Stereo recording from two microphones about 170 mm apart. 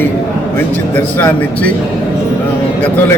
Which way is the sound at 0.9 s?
10° left (ahead or behind).